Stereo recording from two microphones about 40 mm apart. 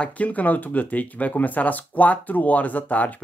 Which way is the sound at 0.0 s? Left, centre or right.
Left.